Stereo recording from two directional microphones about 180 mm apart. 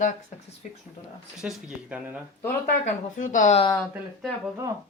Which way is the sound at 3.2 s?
45° left (ahead or behind).